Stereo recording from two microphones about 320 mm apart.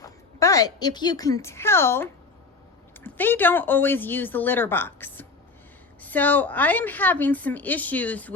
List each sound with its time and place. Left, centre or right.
0.0 s a woman's voice: centre